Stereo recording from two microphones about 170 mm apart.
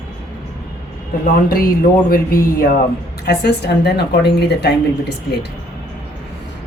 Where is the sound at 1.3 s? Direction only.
55° left (ahead or behind).